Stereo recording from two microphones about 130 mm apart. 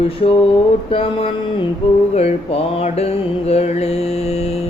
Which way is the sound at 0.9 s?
45° left (ahead or behind).